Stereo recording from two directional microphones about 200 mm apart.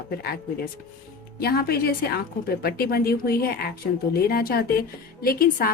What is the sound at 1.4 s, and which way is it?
A woman's voice, 50° left (ahead or behind).